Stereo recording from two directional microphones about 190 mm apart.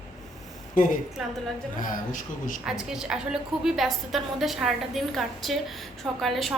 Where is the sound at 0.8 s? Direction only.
45° left (ahead or behind).